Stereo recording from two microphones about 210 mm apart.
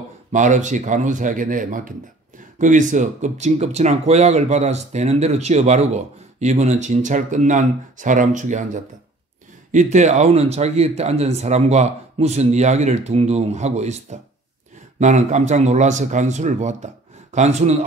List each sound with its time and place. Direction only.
0.3 s speech: 35° right (ahead or behind)